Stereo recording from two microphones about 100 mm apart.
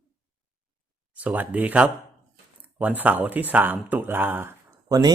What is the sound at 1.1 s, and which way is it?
Speech, 15° right (ahead or behind).